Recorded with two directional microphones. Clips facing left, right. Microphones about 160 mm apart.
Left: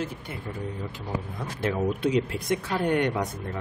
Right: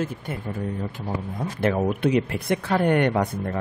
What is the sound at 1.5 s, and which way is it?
Speech, 60° right (ahead or behind).